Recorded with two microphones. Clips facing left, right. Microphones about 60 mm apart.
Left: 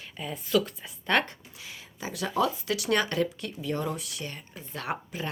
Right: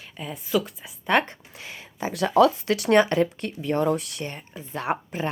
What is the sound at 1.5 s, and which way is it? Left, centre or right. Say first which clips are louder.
Speech: right 11 dB; right.